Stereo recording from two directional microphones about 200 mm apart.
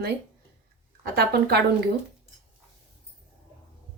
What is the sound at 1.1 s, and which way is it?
Speech, 50° right (ahead or behind).